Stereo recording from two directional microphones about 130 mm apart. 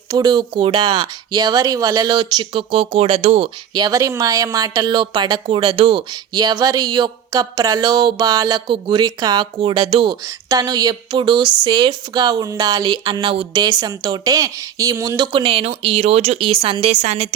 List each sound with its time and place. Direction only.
0.1 s speech: 30° right (ahead or behind); by 3.5 s 50° right (ahead or behind)
3.8 s speech: 30° right (ahead or behind)
10.2 s speech: 30° right (ahead or behind); by 17.2 s 55° right (ahead or behind)